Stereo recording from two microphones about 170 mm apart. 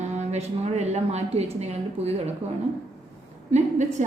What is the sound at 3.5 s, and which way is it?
Speech, 45° right (ahead or behind).